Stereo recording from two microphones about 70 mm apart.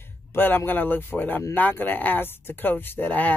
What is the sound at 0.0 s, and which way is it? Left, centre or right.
A man's voice, left.